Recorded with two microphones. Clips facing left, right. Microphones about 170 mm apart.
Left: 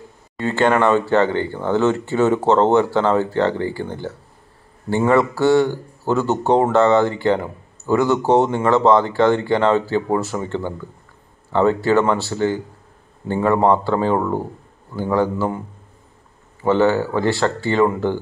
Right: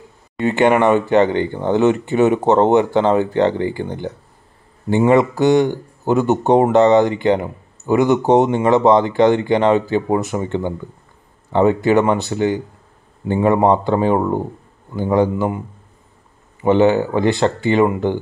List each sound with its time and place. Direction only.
0.4 s speech: 15° right (ahead or behind)
16.6 s speech: 20° right (ahead or behind)